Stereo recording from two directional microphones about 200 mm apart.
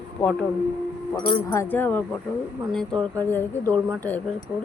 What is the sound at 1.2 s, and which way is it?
Speech, 25° left (ahead or behind).